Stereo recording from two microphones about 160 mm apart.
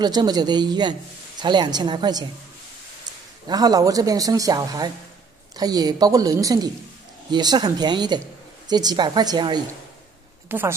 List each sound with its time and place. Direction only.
0.0 s a man's voice: 25° right (ahead or behind)
3.4 s a man's voice: 25° right (ahead or behind)
10.5 s a woman's voice: 10° right (ahead or behind)